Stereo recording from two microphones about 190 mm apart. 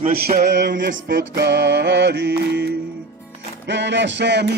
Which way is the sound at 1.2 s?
60° right (ahead or behind).